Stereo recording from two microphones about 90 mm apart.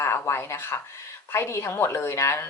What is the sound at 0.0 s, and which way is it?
Speech, 30° left (ahead or behind).